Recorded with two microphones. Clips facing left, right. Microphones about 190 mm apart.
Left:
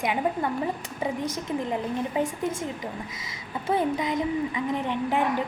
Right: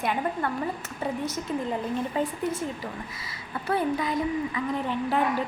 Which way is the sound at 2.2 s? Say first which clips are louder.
Left 2 dB; 15° left (ahead or behind).